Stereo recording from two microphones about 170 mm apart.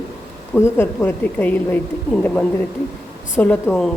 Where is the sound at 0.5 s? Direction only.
15° left (ahead or behind).